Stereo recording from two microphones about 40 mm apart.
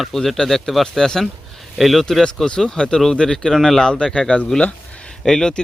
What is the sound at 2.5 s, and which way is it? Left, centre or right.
Speech, left.